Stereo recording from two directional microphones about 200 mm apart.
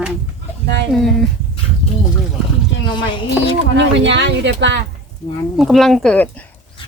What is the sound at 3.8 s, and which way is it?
Speech, 60° right (ahead or behind).